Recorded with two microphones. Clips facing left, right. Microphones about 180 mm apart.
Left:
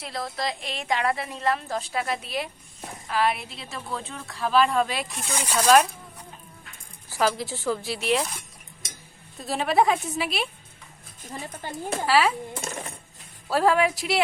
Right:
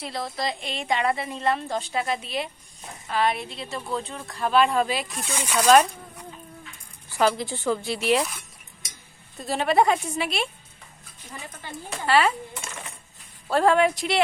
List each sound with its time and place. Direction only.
0.0 s a woman's voice: centre (ahead or behind)
7.2 s a woman's voice: centre (ahead or behind)
9.4 s a woman's voice: centre (ahead or behind)
11.3 s speech: 40° left (ahead or behind)
12.0 s a woman's voice: centre (ahead or behind)
12.5 s coin: 40° left (ahead or behind)
13.5 s a woman's voice: 5° left (ahead or behind)